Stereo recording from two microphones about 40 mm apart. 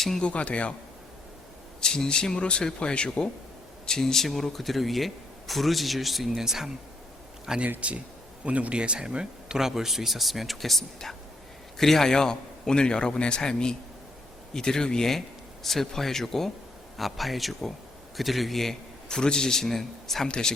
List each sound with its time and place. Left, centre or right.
0.2 s speech: left
1.8 s a man's voice: centre
3.8 s speech: centre
7.8 s a man's voice: right; by 18.8 s centre
19.0 s a man's voice: centre
20.2 s a man's voice: left